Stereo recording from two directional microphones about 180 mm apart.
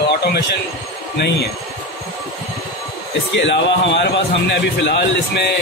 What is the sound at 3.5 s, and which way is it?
Speech, 80° left.